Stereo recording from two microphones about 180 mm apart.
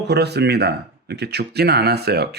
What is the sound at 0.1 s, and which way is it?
Speech, 65° right (ahead or behind).